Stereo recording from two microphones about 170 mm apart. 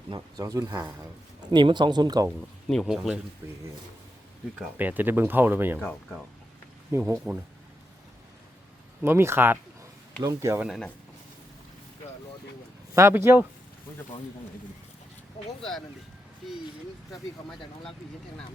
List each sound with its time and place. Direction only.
0.1 s speech: 20° right (ahead or behind)
2.6 s speech: centre (ahead or behind)
4.8 s speech: 10° right (ahead or behind)
6.9 s speech: 15° right (ahead or behind)
7.3 s speech: centre (ahead or behind)
9.0 s speech: 15° right (ahead or behind)
10.6 s speech: centre (ahead or behind)
12.9 s speech: 15° right (ahead or behind)